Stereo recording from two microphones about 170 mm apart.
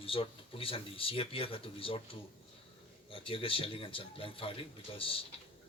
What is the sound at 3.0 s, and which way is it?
A man's voice, 30° left (ahead or behind).